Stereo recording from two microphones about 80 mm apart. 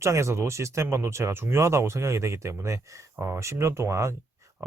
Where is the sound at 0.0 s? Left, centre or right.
Right.